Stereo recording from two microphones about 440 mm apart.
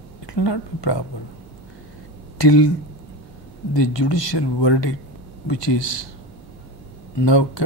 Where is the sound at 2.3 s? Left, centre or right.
Left.